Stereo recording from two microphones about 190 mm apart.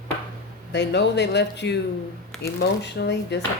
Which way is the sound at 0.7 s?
65° left (ahead or behind).